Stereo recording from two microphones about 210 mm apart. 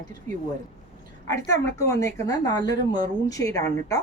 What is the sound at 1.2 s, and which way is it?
Speech, 15° left (ahead or behind).